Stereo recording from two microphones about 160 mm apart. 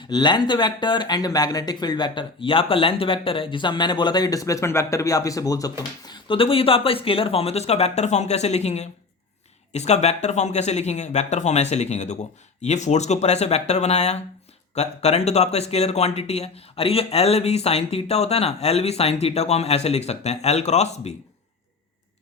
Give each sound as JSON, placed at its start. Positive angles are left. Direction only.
{"t": 0.1, "sound": "speech", "side_deg": 25}
{"t": 6.1, "sound": "speech", "side_deg": 35}